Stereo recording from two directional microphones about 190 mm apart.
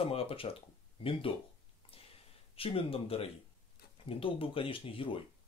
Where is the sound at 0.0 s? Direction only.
30° left (ahead or behind).